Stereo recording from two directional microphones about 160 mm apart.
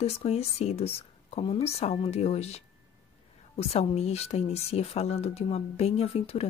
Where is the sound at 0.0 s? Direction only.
40° left (ahead or behind).